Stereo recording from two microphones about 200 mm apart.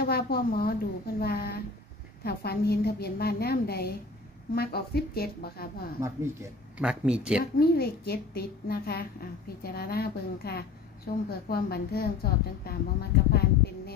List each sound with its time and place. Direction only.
0.0 s a woman's voice: 50° left (ahead or behind)
5.9 s speech: 15° right (ahead or behind)
7.5 s a woman's voice: 50° left (ahead or behind)